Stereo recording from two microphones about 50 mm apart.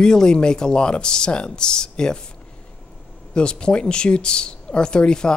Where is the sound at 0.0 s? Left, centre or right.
Centre.